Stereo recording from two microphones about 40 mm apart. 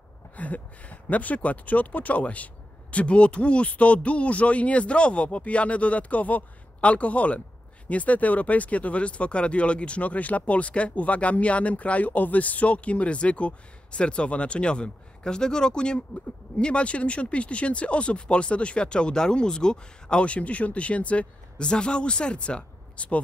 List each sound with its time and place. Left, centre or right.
0.4 s speech: left